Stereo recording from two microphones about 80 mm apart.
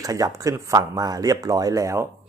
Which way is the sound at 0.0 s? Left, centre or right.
Right.